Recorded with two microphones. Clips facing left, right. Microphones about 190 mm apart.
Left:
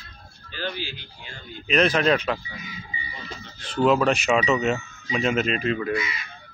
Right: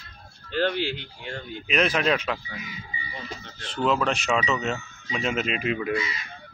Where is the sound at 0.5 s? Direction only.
60° right (ahead or behind).